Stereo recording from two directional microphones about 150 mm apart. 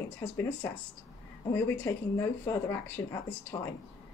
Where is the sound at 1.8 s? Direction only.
20° left (ahead or behind).